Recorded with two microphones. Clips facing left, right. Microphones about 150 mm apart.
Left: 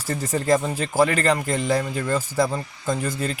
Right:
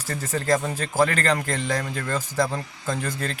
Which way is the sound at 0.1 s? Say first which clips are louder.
Left 3 dB; 15° left (ahead or behind).